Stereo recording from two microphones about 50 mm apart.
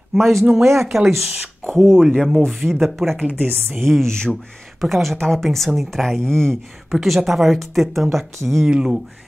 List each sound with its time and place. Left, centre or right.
0.1 s speech: centre
0.5 s speech: right
0.7 s speech: centre
6.0 s speech: centre
6.9 s a woman's voice: centre
8.6 s speech: centre